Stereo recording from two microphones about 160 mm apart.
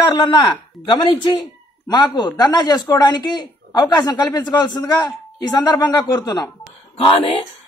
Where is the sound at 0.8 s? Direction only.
30° left (ahead or behind).